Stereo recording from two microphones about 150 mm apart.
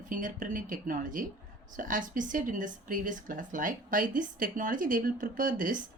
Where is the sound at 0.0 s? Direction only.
60° right (ahead or behind).